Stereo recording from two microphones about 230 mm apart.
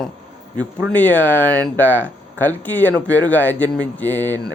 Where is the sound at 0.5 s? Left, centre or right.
Centre.